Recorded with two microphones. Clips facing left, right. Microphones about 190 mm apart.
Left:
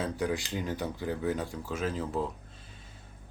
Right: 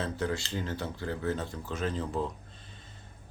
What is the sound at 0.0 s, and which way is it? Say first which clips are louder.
Speech: left 1 dB; 15° left (ahead or behind).